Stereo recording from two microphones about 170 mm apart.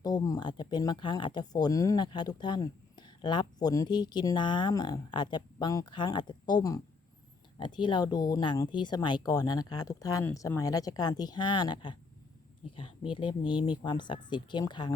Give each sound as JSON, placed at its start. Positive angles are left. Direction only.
{"t": 0.0, "sound": "speech", "side_deg": 20}